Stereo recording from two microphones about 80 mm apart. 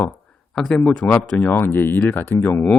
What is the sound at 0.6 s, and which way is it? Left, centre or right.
Speech, centre.